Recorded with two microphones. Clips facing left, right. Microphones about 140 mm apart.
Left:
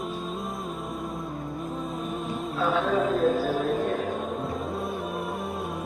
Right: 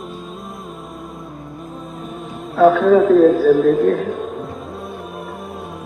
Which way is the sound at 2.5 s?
85° right.